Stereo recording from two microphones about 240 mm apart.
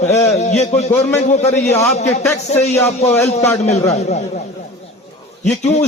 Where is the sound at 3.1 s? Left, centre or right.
Centre.